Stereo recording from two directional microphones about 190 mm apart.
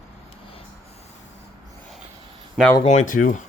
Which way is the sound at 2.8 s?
40° left (ahead or behind).